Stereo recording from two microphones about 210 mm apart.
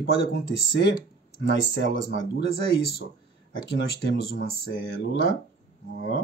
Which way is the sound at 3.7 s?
50° left (ahead or behind).